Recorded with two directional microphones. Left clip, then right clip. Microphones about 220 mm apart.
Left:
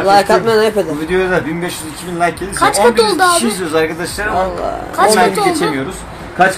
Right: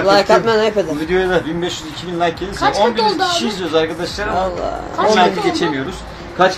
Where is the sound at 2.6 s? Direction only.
50° left (ahead or behind).